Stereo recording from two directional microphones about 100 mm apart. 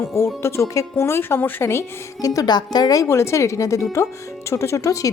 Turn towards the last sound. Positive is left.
turn(degrees=30)  # may be behind; listen again after turning